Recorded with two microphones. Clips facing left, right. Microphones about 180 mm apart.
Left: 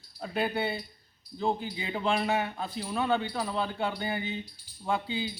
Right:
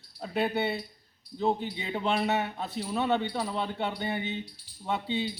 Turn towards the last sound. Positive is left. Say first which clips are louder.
# right 3 dB
turn(degrees=-25)  # may be behind; listen again after turning